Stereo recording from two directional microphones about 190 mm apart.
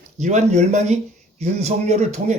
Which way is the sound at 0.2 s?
40° right (ahead or behind).